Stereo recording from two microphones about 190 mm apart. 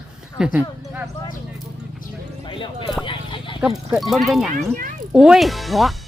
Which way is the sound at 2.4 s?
25° left (ahead or behind).